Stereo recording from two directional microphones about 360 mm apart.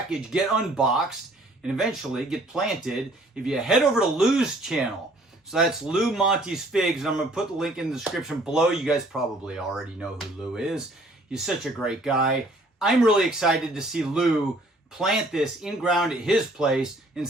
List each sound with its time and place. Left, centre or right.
0.1 s speech: centre